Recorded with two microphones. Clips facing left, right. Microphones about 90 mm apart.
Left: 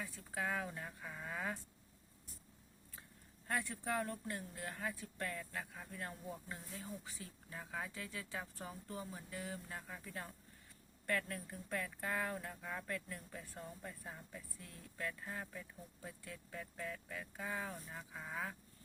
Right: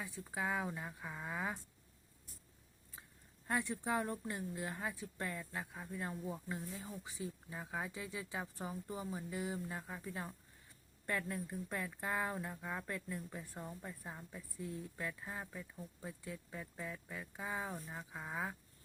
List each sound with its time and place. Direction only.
0.0 s speech: 15° right (ahead or behind)
3.4 s speech: 20° right (ahead or behind)